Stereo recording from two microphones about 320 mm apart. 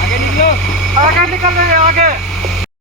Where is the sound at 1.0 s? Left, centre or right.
Right.